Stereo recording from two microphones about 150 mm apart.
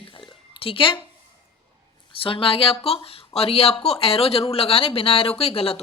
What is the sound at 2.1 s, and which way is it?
Speech, 35° left (ahead or behind).